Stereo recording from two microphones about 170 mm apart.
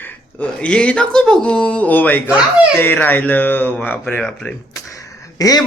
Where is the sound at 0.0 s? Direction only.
10° left (ahead or behind).